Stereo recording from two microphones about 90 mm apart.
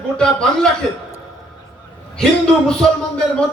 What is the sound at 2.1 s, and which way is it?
A man's voice, 10° left (ahead or behind).